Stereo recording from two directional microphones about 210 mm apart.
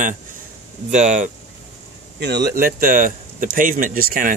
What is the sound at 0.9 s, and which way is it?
Speech, 35° right (ahead or behind).